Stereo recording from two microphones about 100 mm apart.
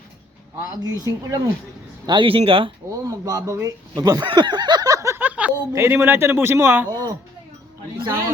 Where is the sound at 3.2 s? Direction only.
35° right (ahead or behind).